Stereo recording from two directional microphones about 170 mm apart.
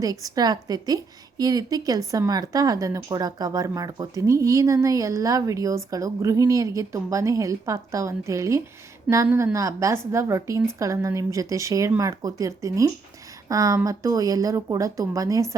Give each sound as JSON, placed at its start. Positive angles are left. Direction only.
{"t": 0.0, "sound": "a woman's voice", "side_deg": -20}